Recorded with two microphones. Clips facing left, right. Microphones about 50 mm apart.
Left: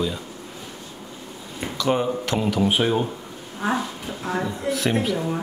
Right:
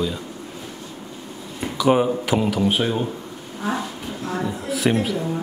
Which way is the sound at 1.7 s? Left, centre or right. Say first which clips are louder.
Right 4 dB; centre.